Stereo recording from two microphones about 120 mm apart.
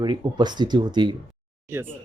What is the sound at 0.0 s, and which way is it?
Speech, 40° right (ahead or behind).